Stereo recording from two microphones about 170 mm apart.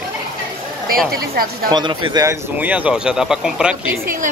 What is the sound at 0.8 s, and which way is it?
Speech, 60° right (ahead or behind).